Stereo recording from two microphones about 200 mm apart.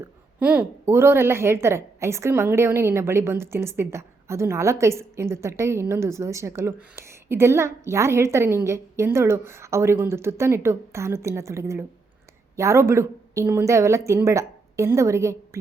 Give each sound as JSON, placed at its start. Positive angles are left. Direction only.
{"t": 0.0, "sound": "a woman's voice", "side_deg": -10}